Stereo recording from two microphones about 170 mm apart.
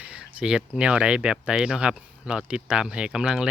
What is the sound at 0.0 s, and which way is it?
Speech, 5° right (ahead or behind).